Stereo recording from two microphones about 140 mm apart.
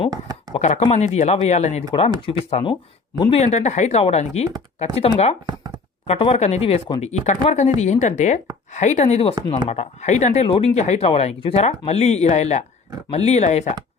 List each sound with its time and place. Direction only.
0.1 s a sound: 25° right (ahead or behind)
0.5 s speech: 55° left (ahead or behind); by 3.4 s 40° left (ahead or behind)
3.4 s speech: 55° left (ahead or behind)
5.5 s shuffling cards: 30° right (ahead or behind)
6.1 s speech: 45° left (ahead or behind)
10.4 s speech: 45° left (ahead or behind)